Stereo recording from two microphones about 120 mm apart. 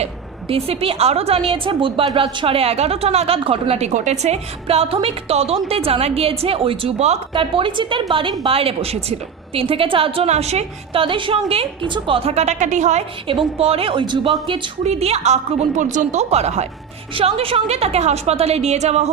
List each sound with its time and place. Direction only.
0.0 s a woman's voice: 50° right (ahead or behind)
1.5 s a woman's voice: 45° right (ahead or behind)
7.3 s a woman's voice: 45° right (ahead or behind); by 13.1 s 75° right (ahead or behind)
13.6 s a woman's voice: 55° right (ahead or behind)
14.8 s a woman's voice: 60° right (ahead or behind)
17.2 s a woman's voice: 55° right (ahead or behind)